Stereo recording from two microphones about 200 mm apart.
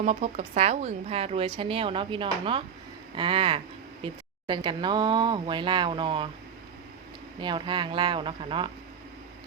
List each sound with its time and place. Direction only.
0.0 s a woman's voice: 35° right (ahead or behind)
7.3 s a woman's voice: 25° right (ahead or behind)